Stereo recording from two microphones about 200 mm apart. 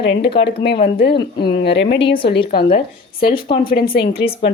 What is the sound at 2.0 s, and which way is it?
Speech, 25° left (ahead or behind).